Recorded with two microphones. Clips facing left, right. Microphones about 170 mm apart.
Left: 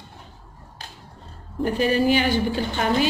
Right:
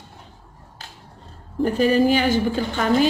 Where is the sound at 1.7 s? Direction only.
40° right (ahead or behind).